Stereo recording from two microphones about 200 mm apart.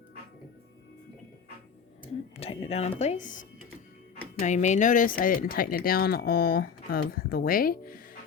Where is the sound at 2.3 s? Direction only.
30° left (ahead or behind).